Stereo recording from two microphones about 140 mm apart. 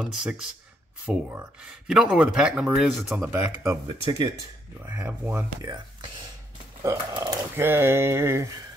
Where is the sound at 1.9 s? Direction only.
5° right (ahead or behind).